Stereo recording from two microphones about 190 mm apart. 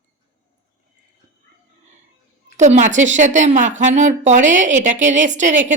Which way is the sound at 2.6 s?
40° right (ahead or behind).